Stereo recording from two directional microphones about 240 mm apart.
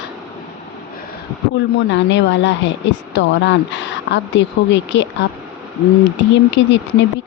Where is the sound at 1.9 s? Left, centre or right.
Left.